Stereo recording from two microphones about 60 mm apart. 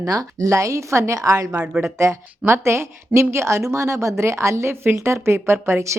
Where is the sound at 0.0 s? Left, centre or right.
Right.